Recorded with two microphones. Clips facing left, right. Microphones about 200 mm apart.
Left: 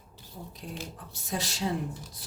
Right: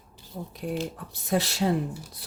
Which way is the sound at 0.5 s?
65° right (ahead or behind).